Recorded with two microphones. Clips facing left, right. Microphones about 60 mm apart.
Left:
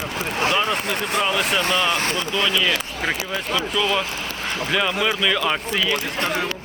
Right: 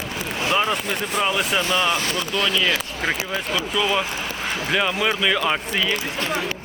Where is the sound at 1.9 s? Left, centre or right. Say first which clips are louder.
Left 1 dB; left.